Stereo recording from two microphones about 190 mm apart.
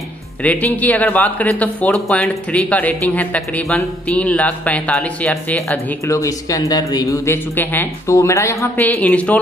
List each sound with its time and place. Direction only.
0.4 s a man's voice: 10° left (ahead or behind)
6.0 s a man's voice: 15° left (ahead or behind)